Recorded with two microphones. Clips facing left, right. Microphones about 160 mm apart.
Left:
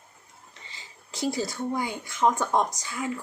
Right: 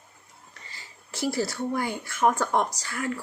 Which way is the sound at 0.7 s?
20° left (ahead or behind).